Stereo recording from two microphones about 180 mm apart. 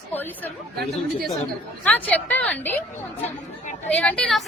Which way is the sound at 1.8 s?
10° left (ahead or behind).